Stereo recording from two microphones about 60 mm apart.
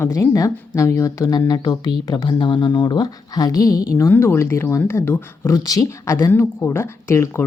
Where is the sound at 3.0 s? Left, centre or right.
Left.